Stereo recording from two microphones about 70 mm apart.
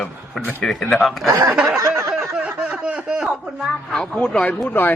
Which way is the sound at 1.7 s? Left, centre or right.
Right.